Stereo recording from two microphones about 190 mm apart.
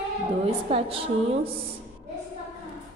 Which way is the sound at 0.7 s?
30° right (ahead or behind).